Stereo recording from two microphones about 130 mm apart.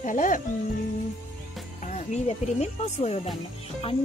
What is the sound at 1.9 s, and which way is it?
Speech, 60° left (ahead or behind).